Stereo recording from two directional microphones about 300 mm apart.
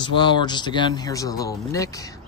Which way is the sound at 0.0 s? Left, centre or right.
Centre.